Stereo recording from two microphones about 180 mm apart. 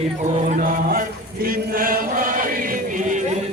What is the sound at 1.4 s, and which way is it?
Chant, 50° right (ahead or behind).